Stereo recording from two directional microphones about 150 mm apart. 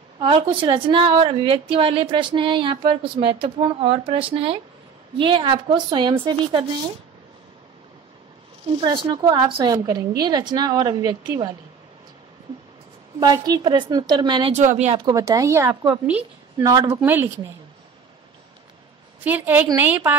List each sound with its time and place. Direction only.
0.2 s a woman's voice: 35° right (ahead or behind)
8.7 s a woman's voice: 30° right (ahead or behind)
13.2 s a woman's voice: 25° right (ahead or behind)
14.5 s speech: 55° right (ahead or behind)
15.0 s a woman's voice: 20° right (ahead or behind)
15.9 s speech: 10° right (ahead or behind)
16.6 s speech: 20° right (ahead or behind)
19.2 s speech: 10° right (ahead or behind)